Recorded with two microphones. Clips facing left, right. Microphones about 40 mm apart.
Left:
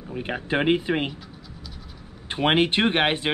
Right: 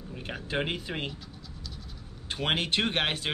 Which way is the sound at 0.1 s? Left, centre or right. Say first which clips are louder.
Left 8 dB; left.